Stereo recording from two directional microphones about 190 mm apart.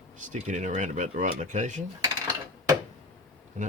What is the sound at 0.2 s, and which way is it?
Speech, 40° right (ahead or behind).